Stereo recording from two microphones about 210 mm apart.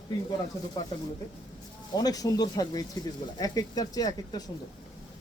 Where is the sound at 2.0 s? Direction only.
20° left (ahead or behind).